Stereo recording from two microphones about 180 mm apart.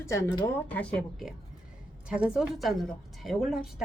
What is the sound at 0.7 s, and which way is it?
A woman's voice, 5° left (ahead or behind).